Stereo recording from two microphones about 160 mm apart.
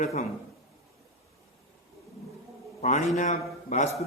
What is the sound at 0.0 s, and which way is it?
Speech, 45° left (ahead or behind).